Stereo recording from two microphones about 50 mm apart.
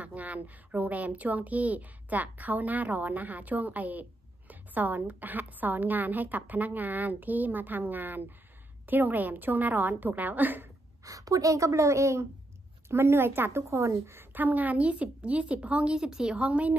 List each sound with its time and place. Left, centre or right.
0.0 s a woman's voice: right
4.5 s a sound: right
5.0 s a woman's voice: right
11.1 s a woman's voice: right
12.8 s a woman's voice: right
14.3 s a woman's voice: right; by 16.3 s centre
16.3 s a woman's voice: right